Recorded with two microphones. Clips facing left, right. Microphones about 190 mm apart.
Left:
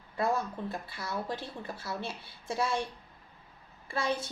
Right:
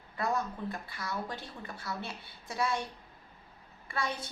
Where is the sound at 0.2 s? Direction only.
30° left (ahead or behind).